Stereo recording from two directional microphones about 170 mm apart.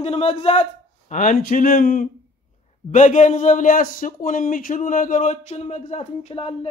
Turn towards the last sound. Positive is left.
turn(degrees=35)  # may be behind; listen again after turning